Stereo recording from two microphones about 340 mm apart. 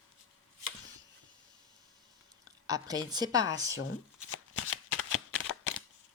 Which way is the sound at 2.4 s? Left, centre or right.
Centre.